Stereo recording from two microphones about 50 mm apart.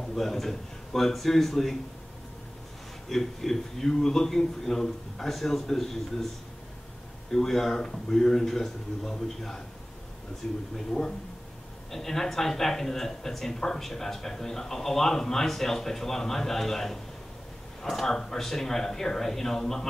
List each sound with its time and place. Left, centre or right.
0.1 s a man's voice: centre
3.1 s a man's voice: centre
7.2 s speech: centre